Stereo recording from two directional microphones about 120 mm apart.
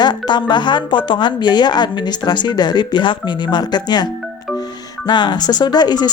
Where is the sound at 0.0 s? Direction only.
40° left (ahead or behind).